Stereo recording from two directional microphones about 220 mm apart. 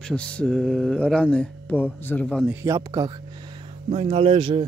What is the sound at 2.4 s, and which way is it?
Speech, 10° right (ahead or behind).